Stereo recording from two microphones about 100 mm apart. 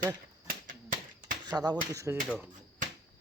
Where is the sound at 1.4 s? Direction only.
40° right (ahead or behind).